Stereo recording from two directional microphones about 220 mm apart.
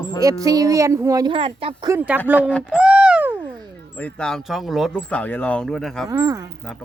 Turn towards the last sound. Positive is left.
turn(degrees=-15)  # may be behind; listen again after turning